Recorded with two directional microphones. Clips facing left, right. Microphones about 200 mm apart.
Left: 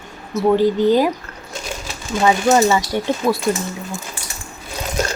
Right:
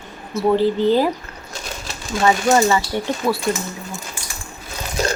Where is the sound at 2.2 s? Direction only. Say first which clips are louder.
Left 1 dB; 5° left (ahead or behind).